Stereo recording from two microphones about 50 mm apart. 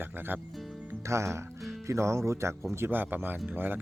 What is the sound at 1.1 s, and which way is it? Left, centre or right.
Speech, right.